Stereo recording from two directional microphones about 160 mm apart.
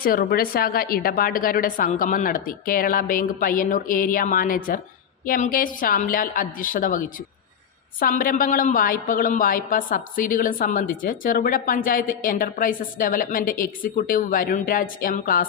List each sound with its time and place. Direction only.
0.0 s a woman's voice: 65° left (ahead or behind)